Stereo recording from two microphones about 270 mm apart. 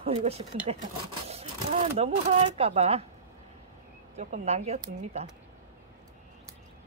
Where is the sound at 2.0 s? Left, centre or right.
Right.